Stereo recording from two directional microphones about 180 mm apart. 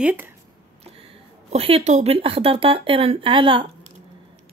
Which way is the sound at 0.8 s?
35° right (ahead or behind).